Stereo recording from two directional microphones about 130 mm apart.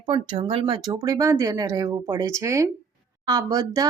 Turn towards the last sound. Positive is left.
turn(degrees=-30)  # may be behind; listen again after turning